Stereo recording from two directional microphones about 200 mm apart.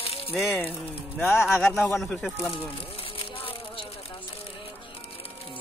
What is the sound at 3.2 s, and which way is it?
Music, 25° left (ahead or behind).